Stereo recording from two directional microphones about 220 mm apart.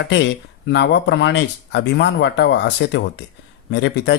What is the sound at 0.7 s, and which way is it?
A man's voice, 50° left (ahead or behind).